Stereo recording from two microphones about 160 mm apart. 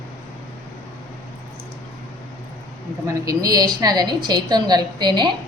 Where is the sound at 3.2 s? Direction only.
25° right (ahead or behind).